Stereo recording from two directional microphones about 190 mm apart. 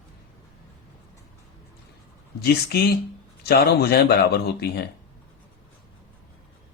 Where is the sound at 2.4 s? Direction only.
55° left (ahead or behind).